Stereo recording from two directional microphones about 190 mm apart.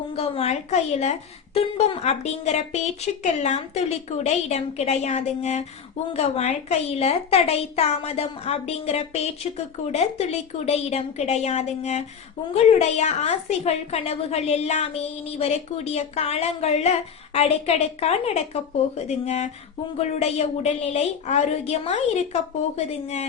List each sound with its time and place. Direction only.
0.2 s a woman's voice: 35° left (ahead or behind)